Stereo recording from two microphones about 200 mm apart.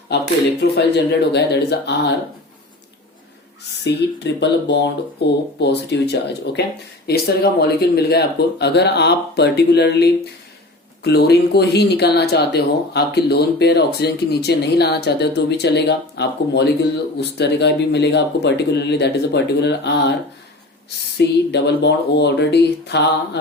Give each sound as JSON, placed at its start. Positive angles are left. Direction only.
{"t": 0.6, "sound": "speech", "side_deg": 55}
{"t": 3.8, "sound": "speech", "side_deg": 60}
{"t": 21.2, "sound": "speech", "side_deg": 60}